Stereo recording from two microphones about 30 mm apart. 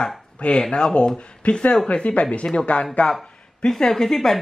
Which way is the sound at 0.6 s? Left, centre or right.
Left.